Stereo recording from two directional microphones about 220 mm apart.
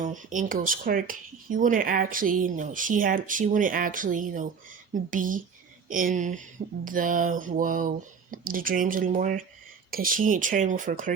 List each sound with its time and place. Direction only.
0.0 s speech: 35° right (ahead or behind)